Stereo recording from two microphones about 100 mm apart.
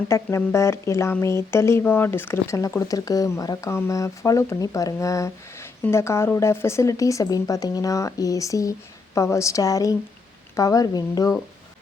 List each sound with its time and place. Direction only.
0.1 s a woman's voice: 30° left (ahead or behind)
3.7 s a woman's voice: 25° left (ahead or behind)